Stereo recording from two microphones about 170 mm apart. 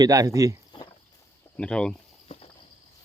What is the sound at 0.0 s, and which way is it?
Speech, 20° right (ahead or behind).